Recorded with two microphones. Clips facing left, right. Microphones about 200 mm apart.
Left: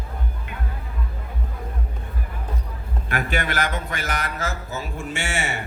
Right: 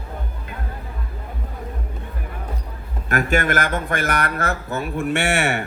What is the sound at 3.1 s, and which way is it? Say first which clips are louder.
A man's voice: right 6 dB; 45° right (ahead or behind).